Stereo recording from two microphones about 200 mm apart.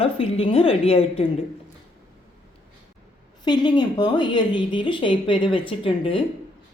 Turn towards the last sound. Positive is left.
turn(degrees=25)  # may be behind; listen again after turning